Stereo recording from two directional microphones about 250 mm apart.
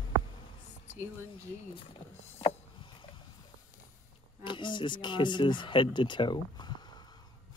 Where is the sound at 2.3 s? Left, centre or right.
Left.